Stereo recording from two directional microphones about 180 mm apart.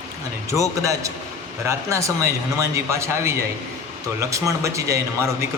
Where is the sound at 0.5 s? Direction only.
15° right (ahead or behind).